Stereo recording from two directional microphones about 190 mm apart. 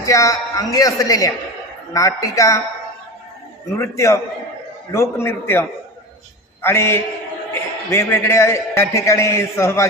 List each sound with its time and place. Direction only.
0.0 s a man's voice: 15° left (ahead or behind)
3.8 s a man's voice: 15° left (ahead or behind)